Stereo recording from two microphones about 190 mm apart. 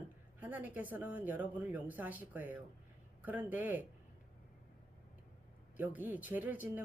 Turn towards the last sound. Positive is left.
turn(degrees=-10)  # may be behind; listen again after turning